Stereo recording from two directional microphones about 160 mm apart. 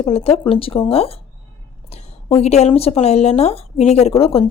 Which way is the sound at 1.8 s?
40° left (ahead or behind).